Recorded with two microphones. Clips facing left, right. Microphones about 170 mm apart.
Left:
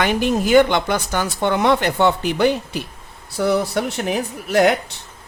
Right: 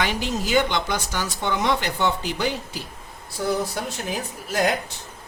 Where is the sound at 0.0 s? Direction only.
55° left (ahead or behind).